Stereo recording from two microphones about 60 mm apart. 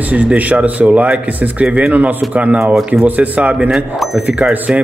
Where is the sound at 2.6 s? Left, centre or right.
Centre.